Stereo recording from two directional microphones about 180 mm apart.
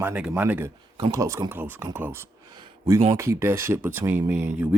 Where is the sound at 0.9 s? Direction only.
20° right (ahead or behind).